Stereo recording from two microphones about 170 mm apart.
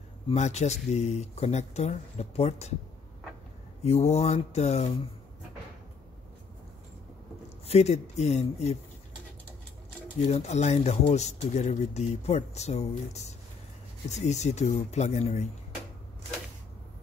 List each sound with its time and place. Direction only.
0.3 s speech: 40° left (ahead or behind)
3.8 s speech: 40° left (ahead or behind)
7.6 s speech: 40° left (ahead or behind)
10.2 s speech: 45° left (ahead or behind)